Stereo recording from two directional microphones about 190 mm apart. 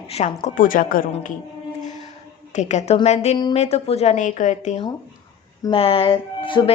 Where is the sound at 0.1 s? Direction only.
35° left (ahead or behind).